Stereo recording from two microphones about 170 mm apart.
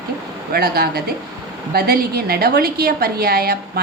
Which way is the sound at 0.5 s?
65° right (ahead or behind).